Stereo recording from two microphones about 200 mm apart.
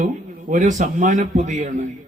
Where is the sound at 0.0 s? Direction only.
40° right (ahead or behind).